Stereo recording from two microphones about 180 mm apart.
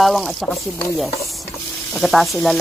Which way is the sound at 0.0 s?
Centre (ahead or behind).